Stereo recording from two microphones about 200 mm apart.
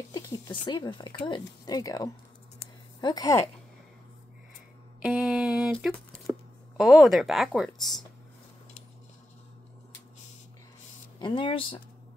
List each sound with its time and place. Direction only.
0.1 s speech: 20° left (ahead or behind)
5.0 s speech: centre (ahead or behind)
11.1 s speech: 25° left (ahead or behind)